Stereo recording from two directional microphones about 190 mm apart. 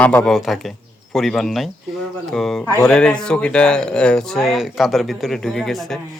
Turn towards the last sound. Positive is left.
turn(degrees=0)  # may be behind; listen again after turning